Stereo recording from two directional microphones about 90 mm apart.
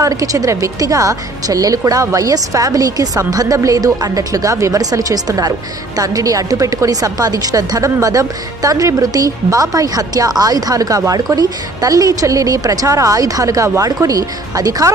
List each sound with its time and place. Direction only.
0.0 s speech: 40° right (ahead or behind)